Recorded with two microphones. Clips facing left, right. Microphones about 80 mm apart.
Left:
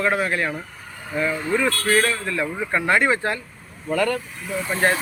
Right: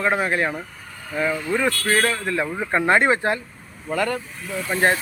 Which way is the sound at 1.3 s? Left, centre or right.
Left.